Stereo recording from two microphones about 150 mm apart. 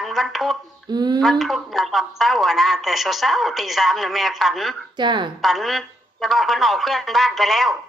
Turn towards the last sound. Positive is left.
turn(degrees=0)  # may be behind; listen again after turning